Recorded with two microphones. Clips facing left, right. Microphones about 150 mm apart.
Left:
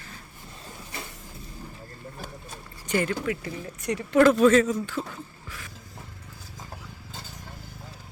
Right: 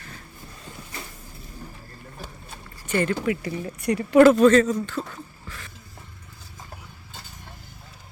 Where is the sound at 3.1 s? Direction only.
5° right (ahead or behind).